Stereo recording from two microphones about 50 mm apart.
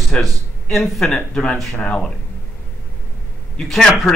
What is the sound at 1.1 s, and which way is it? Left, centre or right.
Speech, left.